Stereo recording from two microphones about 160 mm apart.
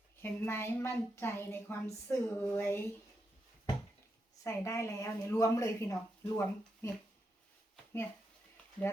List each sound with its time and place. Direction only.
0.2 s a woman's voice: 15° left (ahead or behind)
4.4 s speech: 20° left (ahead or behind)